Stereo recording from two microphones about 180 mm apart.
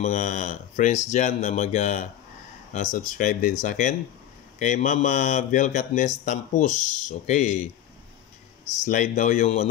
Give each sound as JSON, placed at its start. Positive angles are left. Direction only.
{"t": 0.0, "sound": "speech", "side_deg": 45}
{"t": 8.8, "sound": "speech", "side_deg": 45}